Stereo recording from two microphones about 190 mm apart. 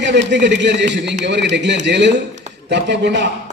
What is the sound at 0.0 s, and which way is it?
A man's voice, 65° right (ahead or behind).